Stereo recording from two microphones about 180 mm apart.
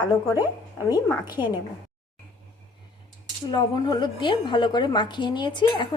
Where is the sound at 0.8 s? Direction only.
20° left (ahead or behind).